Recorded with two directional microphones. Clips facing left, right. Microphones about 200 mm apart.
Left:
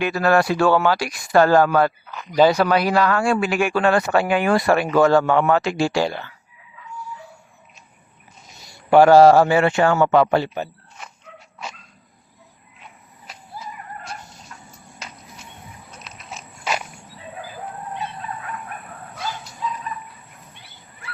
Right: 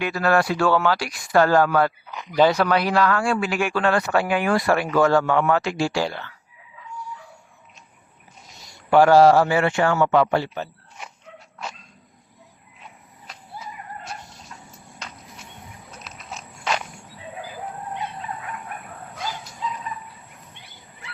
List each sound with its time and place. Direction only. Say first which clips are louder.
0.0 s speech: left 3 dB; 25° left (ahead or behind)
1.3 s speech: left 2 dB; 30° left (ahead or behind)
2.4 s speech: left 2 dB; 10° left (ahead or behind)
9.1 s a man's voice: left 3 dB; 45° left (ahead or behind)
9.5 s speech: left 3 dB; 25° left (ahead or behind)
10.4 s speech: left 3 dB; 15° left (ahead or behind)
14.0 s a sound: left 1 dB; centre (ahead or behind)